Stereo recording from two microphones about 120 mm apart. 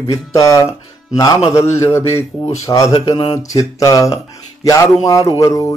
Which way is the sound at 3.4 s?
30° left (ahead or behind).